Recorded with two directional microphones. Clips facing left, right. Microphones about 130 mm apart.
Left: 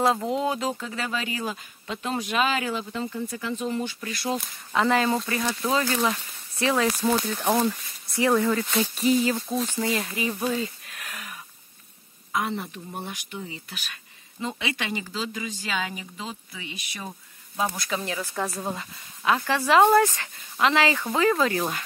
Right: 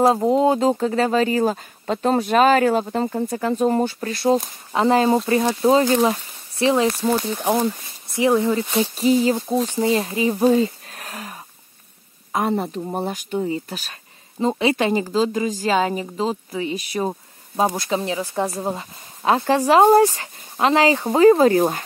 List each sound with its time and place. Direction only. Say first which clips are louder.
0.1 s speech: right 9 dB; 30° right (ahead or behind)
6.9 s speech: right 3 dB; 5° right (ahead or behind)
7.2 s speech: right 3 dB; 25° right (ahead or behind)
10.3 s a sound: right 11 dB; 35° right (ahead or behind)
12.3 s speech: right 7 dB; 40° right (ahead or behind)
17.7 s speech: right 7 dB; 25° right (ahead or behind)